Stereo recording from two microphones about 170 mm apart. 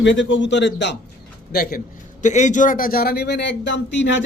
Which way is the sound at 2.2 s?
45° left (ahead or behind).